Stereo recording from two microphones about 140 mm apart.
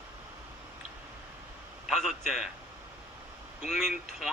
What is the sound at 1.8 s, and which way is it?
Speech, centre (ahead or behind).